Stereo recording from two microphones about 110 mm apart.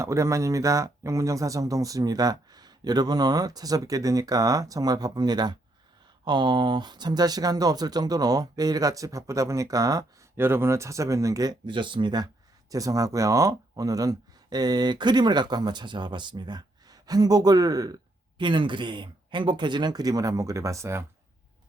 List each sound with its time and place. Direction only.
0.0 s speech: 25° right (ahead or behind)
10.3 s speech: 20° right (ahead or behind)
18.3 s speech: 45° right (ahead or behind); by 21.0 s 25° right (ahead or behind)